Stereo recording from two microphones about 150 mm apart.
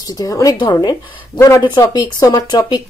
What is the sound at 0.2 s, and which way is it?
Speech, 25° left (ahead or behind).